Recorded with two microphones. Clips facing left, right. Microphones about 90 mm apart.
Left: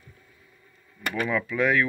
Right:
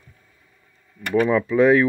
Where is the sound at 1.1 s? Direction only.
30° right (ahead or behind).